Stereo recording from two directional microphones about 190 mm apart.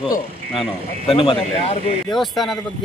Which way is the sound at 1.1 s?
30° left (ahead or behind).